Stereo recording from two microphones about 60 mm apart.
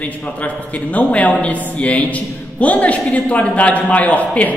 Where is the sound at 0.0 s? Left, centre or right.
Left.